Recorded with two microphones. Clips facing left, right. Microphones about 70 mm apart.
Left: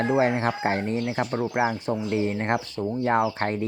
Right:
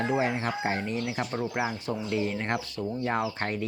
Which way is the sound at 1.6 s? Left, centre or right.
Left.